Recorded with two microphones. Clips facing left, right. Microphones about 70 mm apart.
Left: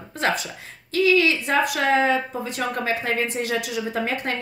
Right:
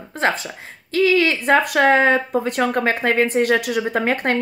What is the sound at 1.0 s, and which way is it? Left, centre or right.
Speech, right.